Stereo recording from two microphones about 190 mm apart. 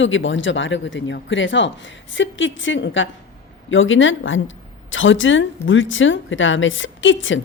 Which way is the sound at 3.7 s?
90° left.